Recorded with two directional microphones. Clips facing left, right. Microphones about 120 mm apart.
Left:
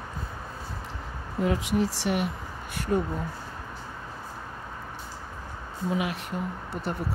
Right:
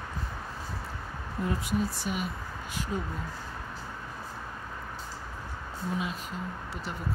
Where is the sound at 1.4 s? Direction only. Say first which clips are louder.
Left 5 dB; 90° left; by 3.0 s 60° left (ahead or behind).